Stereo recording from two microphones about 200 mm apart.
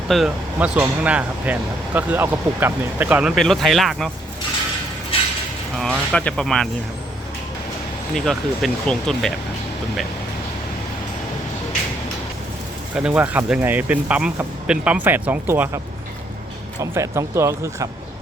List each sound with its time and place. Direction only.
0.1 s speech: 5° right (ahead or behind)
5.1 s a sound: 30° left (ahead or behind)
5.7 s speech: centre (ahead or behind)
8.1 s speech: centre (ahead or behind)
13.0 s speech: 5° right (ahead or behind)
16.8 s speech: 15° right (ahead or behind)